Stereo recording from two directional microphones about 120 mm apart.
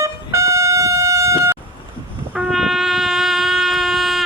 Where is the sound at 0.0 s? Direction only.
25° right (ahead or behind).